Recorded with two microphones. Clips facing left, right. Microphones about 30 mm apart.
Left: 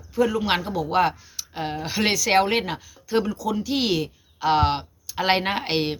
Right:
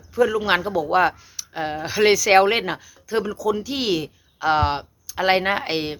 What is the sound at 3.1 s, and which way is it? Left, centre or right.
Speech, left.